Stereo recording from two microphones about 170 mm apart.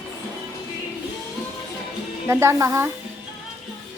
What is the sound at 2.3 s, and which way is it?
Speech, 15° right (ahead or behind).